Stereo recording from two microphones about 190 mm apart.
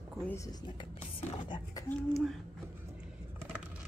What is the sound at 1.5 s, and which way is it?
Speech, 15° left (ahead or behind).